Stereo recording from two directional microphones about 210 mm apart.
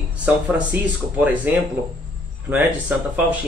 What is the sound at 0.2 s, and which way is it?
Speech, 5° right (ahead or behind).